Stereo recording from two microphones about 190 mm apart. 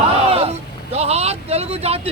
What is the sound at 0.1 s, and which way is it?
Vehicle, 30° right (ahead or behind).